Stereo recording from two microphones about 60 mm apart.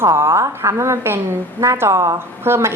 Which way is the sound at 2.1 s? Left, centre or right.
Right.